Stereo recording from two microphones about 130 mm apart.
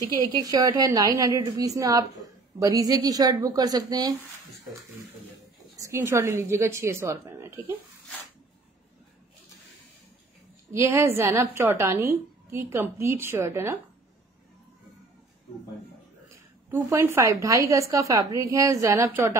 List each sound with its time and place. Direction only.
0.4 s a woman's voice: 30° right (ahead or behind)
5.8 s a woman's voice: 20° right (ahead or behind)
10.7 s a woman's voice: 20° right (ahead or behind)
16.7 s a woman's voice: 20° right (ahead or behind)